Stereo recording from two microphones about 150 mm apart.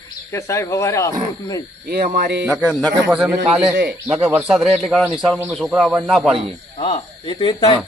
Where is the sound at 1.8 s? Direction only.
90° right.